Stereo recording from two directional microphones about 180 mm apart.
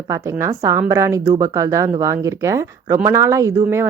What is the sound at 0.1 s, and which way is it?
Speech, 15° right (ahead or behind).